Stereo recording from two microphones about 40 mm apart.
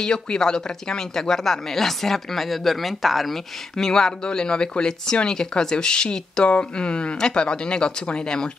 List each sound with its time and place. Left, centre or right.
0.0 s speech: centre
3.7 s speech: centre